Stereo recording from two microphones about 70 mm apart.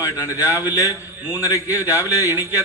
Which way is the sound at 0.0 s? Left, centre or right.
Left.